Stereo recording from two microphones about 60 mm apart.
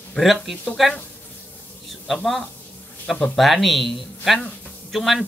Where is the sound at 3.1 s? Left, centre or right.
Centre.